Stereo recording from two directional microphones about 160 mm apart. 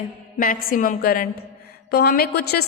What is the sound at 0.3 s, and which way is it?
Speech, 60° left (ahead or behind).